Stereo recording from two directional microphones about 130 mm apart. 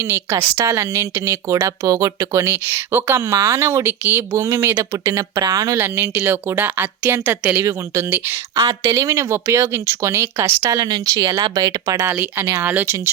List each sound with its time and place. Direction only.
0.0 s speech: 20° right (ahead or behind)
5.7 s a woman's voice: 15° right (ahead or behind)
12.0 s a woman's voice: 15° right (ahead or behind)